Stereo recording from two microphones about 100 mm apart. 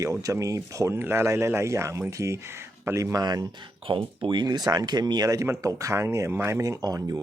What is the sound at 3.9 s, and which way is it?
Speech, 55° right (ahead or behind).